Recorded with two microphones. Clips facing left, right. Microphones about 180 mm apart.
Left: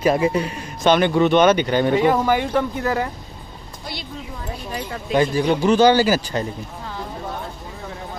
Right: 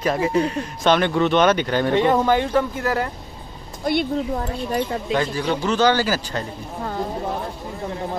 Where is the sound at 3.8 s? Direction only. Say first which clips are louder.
Right 13 dB; 55° right (ahead or behind).